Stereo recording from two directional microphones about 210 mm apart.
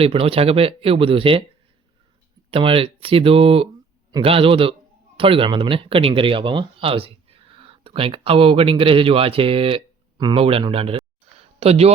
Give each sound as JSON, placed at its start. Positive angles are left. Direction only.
{"t": 0.0, "sound": "speech", "side_deg": -25}
{"t": 2.5, "sound": "speech", "side_deg": -25}